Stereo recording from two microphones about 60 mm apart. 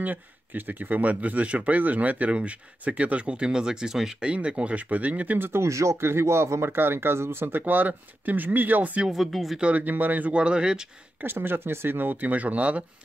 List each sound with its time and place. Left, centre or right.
0.0 s speech: right
5.5 s speech: right
9.0 s speech: centre
9.6 s speech: right
11.2 s speech: right